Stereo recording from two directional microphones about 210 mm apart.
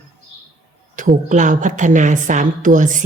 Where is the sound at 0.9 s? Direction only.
35° right (ahead or behind).